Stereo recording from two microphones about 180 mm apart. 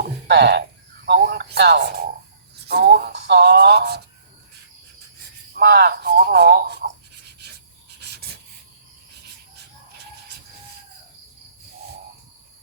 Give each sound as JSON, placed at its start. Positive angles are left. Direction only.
{"t": 0.0, "sound": "a sound", "side_deg": -70}
{"t": 1.0, "sound": "radio", "side_deg": -65}
{"t": 2.6, "sound": "speech", "side_deg": -65}
{"t": 5.5, "sound": "speech", "side_deg": -60}
{"t": 10.2, "sound": "train", "side_deg": -65}